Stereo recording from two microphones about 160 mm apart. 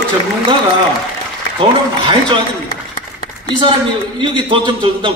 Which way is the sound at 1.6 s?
30° right (ahead or behind).